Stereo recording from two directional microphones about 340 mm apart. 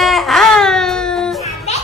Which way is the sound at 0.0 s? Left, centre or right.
Centre.